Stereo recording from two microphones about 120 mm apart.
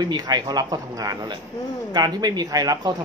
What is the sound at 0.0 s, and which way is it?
Speech, 35° right (ahead or behind).